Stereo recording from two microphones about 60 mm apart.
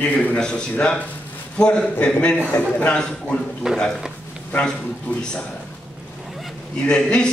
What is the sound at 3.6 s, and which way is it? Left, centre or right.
Speech, centre.